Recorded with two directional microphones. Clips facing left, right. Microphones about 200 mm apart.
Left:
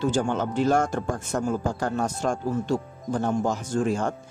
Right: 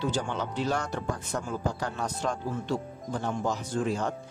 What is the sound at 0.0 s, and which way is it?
Speech, 45° left (ahead or behind).